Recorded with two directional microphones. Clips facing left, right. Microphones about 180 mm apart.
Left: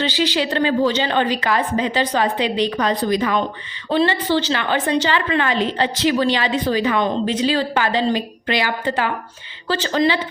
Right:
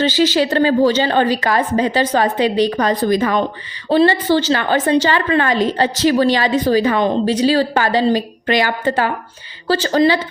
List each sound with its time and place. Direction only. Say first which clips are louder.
0.0 s a woman's voice: right 5 dB; 40° right (ahead or behind)